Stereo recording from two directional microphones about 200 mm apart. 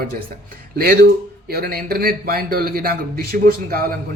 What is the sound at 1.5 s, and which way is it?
Speech, 50° right (ahead or behind).